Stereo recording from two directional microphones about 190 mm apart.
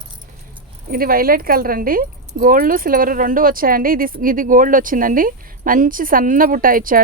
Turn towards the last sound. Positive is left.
turn(degrees=-50)  # may be behind; listen again after turning